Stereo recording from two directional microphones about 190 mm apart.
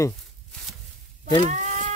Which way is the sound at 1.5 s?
40° right (ahead or behind).